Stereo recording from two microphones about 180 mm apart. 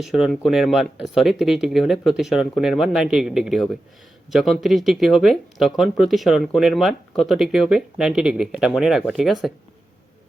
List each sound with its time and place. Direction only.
0.0 s speech: centre (ahead or behind)